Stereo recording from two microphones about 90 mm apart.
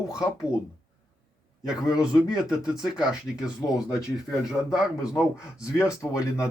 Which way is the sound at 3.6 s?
30° left (ahead or behind).